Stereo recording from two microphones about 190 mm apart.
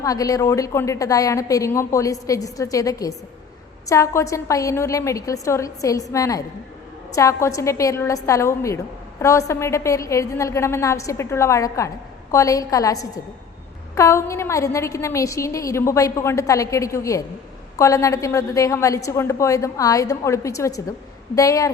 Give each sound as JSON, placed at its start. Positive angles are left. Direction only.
{"t": 0.0, "sound": "a woman's voice", "side_deg": 20}